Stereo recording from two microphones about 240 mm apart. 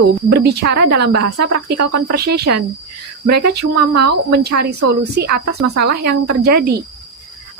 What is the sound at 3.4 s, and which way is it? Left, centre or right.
Speech, right.